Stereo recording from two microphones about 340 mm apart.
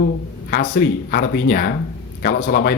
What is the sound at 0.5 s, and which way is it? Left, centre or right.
Speech, left.